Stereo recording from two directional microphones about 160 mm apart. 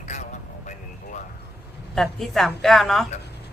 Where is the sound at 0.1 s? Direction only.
50° left (ahead or behind).